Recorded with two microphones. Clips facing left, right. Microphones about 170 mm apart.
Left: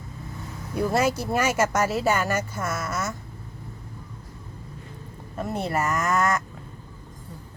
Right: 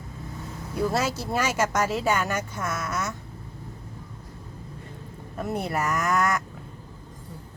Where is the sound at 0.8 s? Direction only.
10° left (ahead or behind).